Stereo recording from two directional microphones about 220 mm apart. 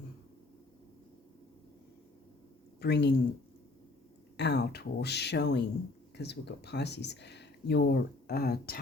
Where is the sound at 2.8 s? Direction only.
50° left (ahead or behind).